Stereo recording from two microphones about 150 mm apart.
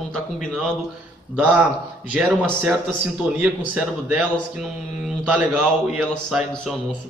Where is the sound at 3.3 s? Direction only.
5° right (ahead or behind).